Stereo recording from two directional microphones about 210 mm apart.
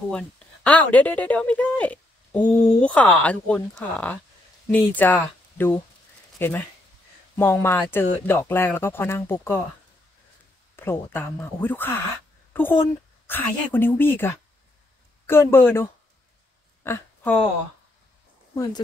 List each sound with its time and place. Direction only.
0.1 s speech: 5° left (ahead or behind)
10.8 s speech: 10° left (ahead or behind)
16.8 s a sound: 10° left (ahead or behind)
18.5 s speech: 15° left (ahead or behind)